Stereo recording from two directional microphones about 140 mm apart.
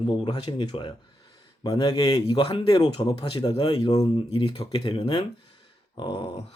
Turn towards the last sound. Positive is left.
turn(degrees=30)  # may be behind; listen again after turning